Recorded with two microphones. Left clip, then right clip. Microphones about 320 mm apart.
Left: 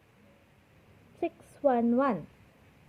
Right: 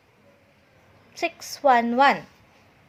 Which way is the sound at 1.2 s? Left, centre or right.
Centre.